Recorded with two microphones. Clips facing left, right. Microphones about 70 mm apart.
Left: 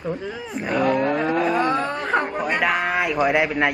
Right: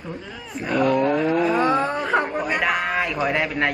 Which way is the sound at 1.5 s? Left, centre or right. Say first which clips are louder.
Right 1 dB; centre.